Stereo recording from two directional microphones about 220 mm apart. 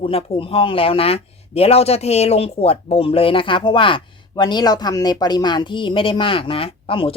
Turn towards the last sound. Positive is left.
turn(degrees=25)  # may be behind; listen again after turning